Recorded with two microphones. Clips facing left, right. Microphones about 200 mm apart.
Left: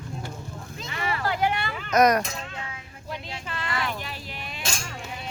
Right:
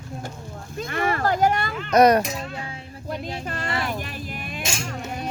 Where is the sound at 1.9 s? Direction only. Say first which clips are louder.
Right 4 dB; 30° right (ahead or behind).